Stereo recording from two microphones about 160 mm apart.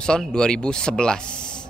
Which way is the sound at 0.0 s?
5° left (ahead or behind).